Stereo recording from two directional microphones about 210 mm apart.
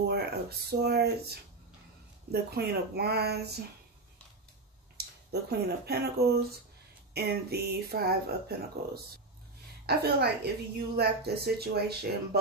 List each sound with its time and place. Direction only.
0.0 s speech: 50° right (ahead or behind)
2.5 s speech: 50° right (ahead or behind)
4.9 s speech: 50° right (ahead or behind)